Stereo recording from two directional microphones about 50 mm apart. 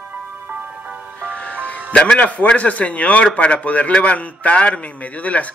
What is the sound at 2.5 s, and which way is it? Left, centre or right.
A man's voice, left.